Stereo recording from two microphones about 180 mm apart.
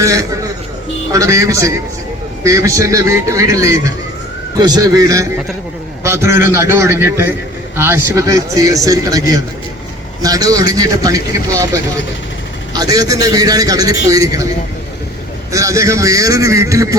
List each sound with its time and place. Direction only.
0.0 s a man's voice: 20° right (ahead or behind)
15.5 s a man's voice: 15° right (ahead or behind)